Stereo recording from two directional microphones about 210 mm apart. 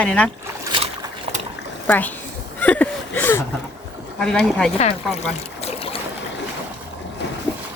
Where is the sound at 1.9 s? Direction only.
10° left (ahead or behind).